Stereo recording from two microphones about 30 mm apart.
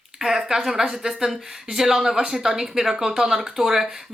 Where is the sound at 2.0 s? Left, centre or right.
Right.